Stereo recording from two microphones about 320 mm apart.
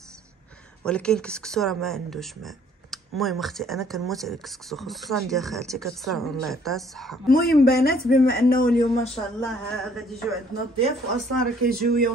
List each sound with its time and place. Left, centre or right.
0.8 s speech: centre
7.2 s a man's voice: left
9.4 s speech: centre
11.6 s speech: right